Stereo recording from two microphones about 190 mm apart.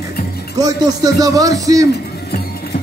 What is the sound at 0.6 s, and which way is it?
A man's voice, 20° right (ahead or behind).